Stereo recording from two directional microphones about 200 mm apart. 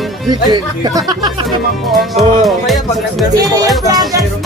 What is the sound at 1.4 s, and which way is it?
Speech, centre (ahead or behind).